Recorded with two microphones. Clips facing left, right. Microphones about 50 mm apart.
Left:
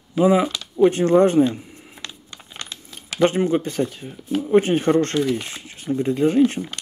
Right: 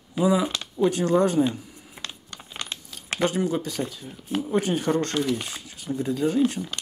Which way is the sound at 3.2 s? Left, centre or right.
Left.